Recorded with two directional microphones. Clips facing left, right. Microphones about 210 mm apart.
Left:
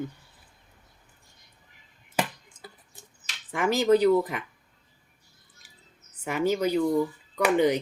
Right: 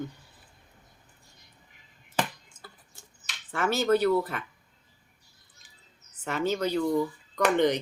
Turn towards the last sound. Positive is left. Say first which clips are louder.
# left 1 dB
turn(degrees=10)  # may be behind; listen again after turning